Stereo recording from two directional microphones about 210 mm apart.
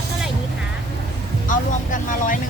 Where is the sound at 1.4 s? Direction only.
40° left (ahead or behind).